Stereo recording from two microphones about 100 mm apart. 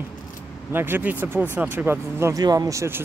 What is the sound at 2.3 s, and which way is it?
Speech, 40° right (ahead or behind).